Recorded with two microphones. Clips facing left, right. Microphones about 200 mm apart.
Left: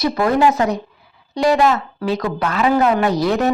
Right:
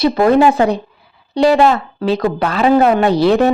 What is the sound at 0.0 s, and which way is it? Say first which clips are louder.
A woman's voice: right 5 dB; 25° right (ahead or behind).